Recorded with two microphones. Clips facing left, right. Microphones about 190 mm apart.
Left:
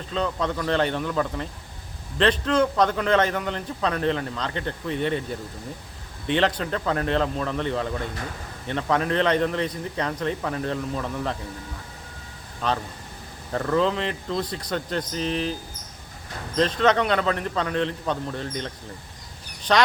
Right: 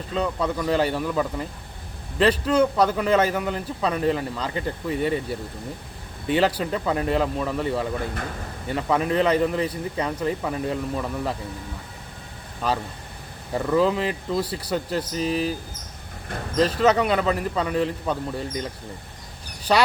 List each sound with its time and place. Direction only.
0.1 s a man's voice: 10° right (ahead or behind)
13.5 s a man's voice: 10° right (ahead or behind)
16.6 s a man's voice: 5° right (ahead or behind)
19.7 s a man's voice: 10° right (ahead or behind)